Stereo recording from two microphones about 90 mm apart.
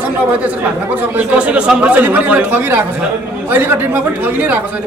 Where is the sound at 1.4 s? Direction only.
10° right (ahead or behind).